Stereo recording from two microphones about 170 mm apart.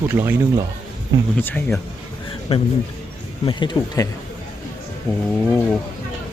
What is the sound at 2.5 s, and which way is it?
Speech, 35° left (ahead or behind).